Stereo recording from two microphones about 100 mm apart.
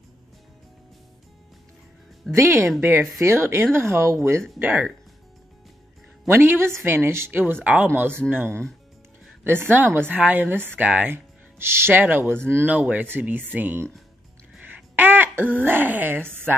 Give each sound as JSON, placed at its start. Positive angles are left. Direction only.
{"t": 2.3, "sound": "speech", "side_deg": -25}
{"t": 6.2, "sound": "speech", "side_deg": -20}
{"t": 15.0, "sound": "speech", "side_deg": -20}